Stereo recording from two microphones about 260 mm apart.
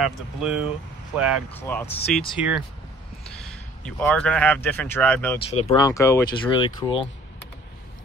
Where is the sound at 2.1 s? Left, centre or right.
Centre.